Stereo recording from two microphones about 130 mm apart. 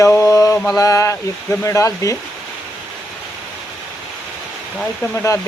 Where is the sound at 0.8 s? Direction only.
25° left (ahead or behind).